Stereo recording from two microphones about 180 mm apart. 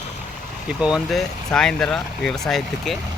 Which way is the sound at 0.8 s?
Centre (ahead or behind).